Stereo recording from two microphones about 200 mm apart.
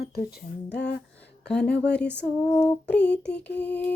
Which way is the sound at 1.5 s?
5° left (ahead or behind).